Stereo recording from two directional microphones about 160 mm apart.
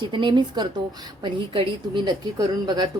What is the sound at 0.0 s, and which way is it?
A woman's voice, 30° right (ahead or behind).